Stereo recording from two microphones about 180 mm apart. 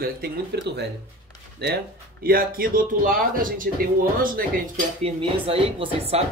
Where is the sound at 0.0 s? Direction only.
65° right (ahead or behind).